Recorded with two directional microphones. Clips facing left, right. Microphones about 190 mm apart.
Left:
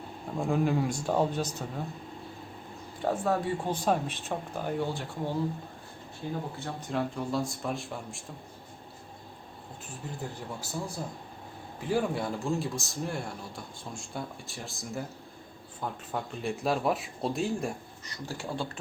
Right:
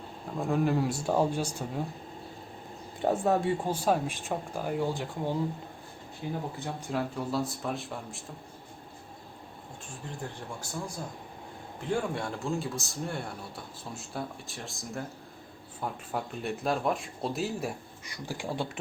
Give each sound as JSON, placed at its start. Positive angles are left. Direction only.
{"t": 0.3, "sound": "speech", "side_deg": 0}
{"t": 3.0, "sound": "speech", "side_deg": -20}
{"t": 3.7, "sound": "speech", "side_deg": -10}
{"t": 10.6, "sound": "a man's voice", "side_deg": 10}